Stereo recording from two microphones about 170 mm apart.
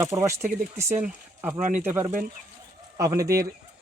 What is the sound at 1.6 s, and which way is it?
Speech, 50° right (ahead or behind).